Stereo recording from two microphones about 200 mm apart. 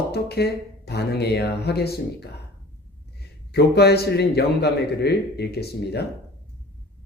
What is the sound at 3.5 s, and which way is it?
A man's voice, 55° left (ahead or behind).